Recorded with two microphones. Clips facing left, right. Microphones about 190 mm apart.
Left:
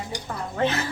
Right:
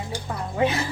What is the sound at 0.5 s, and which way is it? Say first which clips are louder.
Speech: right 2 dB; 10° right (ahead or behind).